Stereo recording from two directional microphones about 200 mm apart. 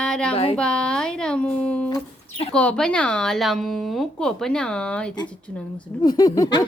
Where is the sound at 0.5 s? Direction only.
5° left (ahead or behind).